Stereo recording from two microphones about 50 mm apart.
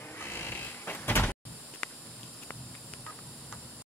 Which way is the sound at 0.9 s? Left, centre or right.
Left.